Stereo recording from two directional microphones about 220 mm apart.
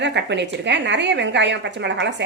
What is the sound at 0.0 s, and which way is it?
Speech, 50° right (ahead or behind).